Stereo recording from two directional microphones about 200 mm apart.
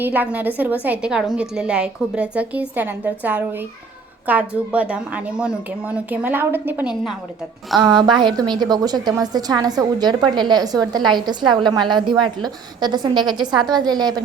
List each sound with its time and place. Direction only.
0.0 s a woman's voice: 10° right (ahead or behind)
7.8 s a woman's voice: 20° right (ahead or behind)